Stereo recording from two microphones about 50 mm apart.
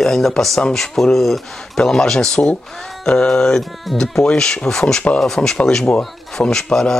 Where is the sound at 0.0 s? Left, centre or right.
Centre.